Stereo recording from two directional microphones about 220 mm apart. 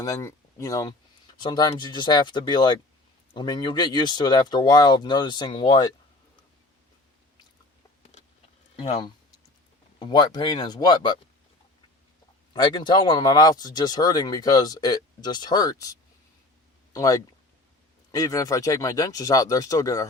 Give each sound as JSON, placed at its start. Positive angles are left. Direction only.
{"t": 0.0, "sound": "speech", "side_deg": 15}
{"t": 8.7, "sound": "speech", "side_deg": 25}
{"t": 12.5, "sound": "speech", "side_deg": 20}